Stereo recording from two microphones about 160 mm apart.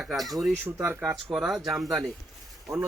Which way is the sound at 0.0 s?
5° right (ahead or behind).